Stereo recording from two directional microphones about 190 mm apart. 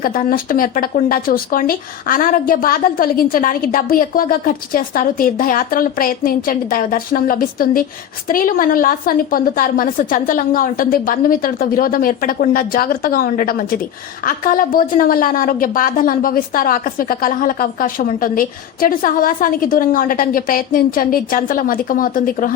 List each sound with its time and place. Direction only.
0.0 s a woman's voice: 50° left (ahead or behind)